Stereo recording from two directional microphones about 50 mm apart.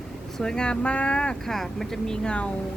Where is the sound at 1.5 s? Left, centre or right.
Centre.